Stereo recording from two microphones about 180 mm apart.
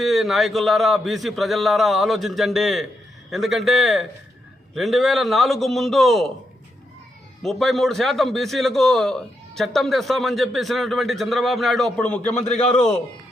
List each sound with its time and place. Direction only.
0.0 s a man's voice: centre (ahead or behind)
7.4 s a man's voice: centre (ahead or behind)
12.3 s a man's voice: 40° left (ahead or behind)